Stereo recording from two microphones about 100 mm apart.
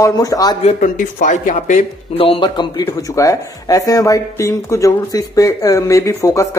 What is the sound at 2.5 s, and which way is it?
Speech, 50° left (ahead or behind).